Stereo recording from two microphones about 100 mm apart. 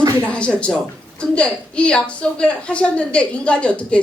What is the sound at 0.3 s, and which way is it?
A woman's voice, 10° left (ahead or behind).